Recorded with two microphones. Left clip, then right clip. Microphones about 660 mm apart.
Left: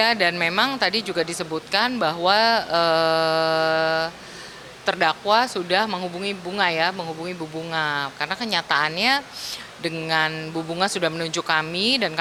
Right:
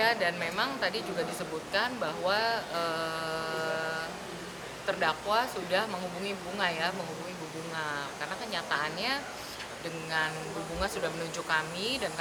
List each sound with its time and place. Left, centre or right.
0.0 s speech: left